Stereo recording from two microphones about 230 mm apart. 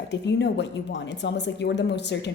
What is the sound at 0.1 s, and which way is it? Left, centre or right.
Speech, left.